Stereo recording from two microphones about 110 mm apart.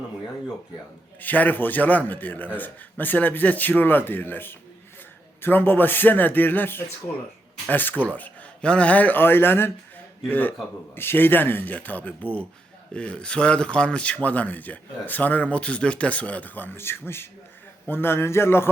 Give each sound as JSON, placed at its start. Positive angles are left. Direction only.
{"t": 1.2, "sound": "a man's voice", "side_deg": 15}